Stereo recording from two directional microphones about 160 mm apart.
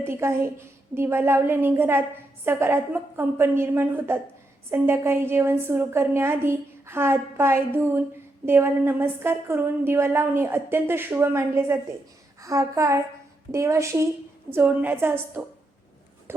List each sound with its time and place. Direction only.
0.0 s a woman's voice: 15° right (ahead or behind)